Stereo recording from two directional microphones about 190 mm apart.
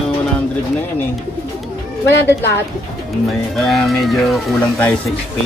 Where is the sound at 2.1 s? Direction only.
65° left (ahead or behind).